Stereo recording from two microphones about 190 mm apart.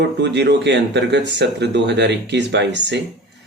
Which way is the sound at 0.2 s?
65° right (ahead or behind).